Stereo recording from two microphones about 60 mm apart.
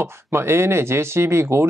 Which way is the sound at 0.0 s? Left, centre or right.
Right.